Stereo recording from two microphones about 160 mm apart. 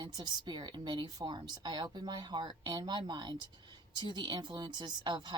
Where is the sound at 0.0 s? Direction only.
25° right (ahead or behind).